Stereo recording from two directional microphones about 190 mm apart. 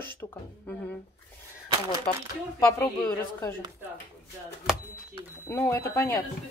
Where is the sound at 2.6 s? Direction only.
15° left (ahead or behind).